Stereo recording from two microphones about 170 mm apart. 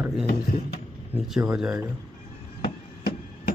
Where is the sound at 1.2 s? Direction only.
5° right (ahead or behind).